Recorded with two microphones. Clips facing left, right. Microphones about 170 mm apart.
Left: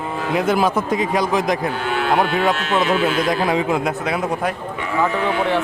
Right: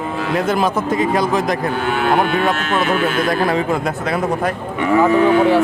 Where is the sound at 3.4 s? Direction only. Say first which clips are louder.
Right 1 dB; 15° left (ahead or behind).